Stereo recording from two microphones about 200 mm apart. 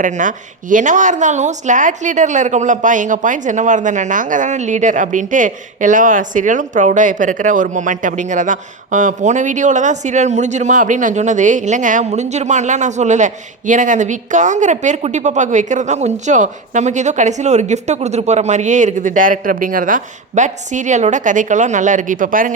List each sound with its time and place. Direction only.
0.0 s speech: 40° right (ahead or behind)